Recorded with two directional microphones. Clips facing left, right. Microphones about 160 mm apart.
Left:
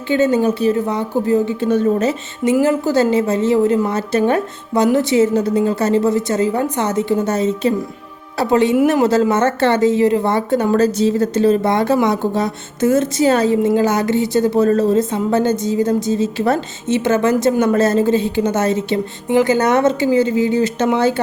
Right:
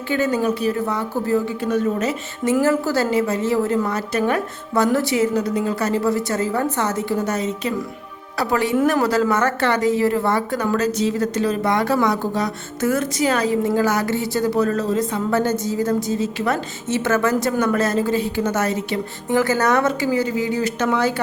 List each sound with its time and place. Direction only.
0.1 s a woman's voice: 25° left (ahead or behind)
2.4 s a woman's voice: 15° left (ahead or behind)